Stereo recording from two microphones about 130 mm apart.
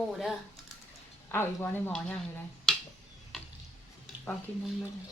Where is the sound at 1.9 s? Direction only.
5° left (ahead or behind).